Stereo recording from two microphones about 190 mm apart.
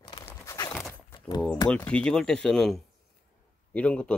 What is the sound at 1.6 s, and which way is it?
Speech, 5° left (ahead or behind).